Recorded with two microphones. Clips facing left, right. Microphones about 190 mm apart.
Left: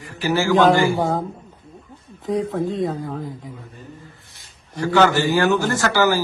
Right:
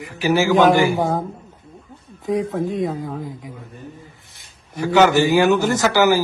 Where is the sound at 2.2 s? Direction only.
20° right (ahead or behind).